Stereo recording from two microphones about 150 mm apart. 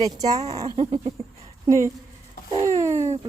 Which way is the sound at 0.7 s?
35° right (ahead or behind).